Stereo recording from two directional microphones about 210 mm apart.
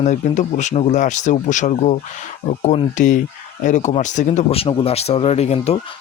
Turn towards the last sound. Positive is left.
turn(degrees=30)  # may be behind; listen again after turning